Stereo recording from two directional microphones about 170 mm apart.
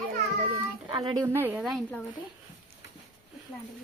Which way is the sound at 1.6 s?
Centre (ahead or behind).